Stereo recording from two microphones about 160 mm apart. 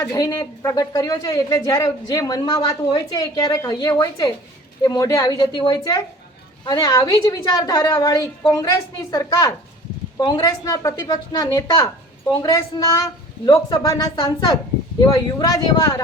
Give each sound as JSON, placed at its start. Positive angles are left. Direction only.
{"t": 0.0, "sound": "speech", "side_deg": 20}